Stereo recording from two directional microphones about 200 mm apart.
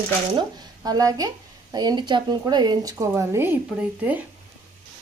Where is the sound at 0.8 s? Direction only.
20° right (ahead or behind).